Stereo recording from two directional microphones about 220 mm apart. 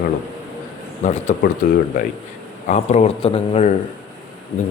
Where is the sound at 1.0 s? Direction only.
35° left (ahead or behind).